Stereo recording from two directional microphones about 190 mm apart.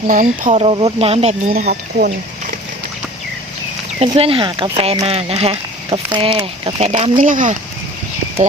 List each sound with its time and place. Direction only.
0.1 s speech: 45° right (ahead or behind)
0.6 s speech: 30° right (ahead or behind)
1.5 s speech: 50° right (ahead or behind)
4.0 s speech: 30° right (ahead or behind)
7.2 s speech: 45° right (ahead or behind)